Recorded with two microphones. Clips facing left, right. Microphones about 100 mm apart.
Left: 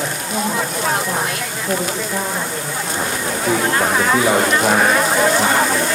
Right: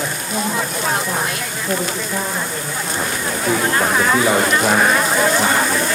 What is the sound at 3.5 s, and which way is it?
Speech, 40° left (ahead or behind).